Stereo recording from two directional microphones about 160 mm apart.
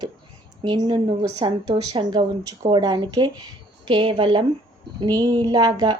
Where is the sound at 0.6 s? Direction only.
30° right (ahead or behind).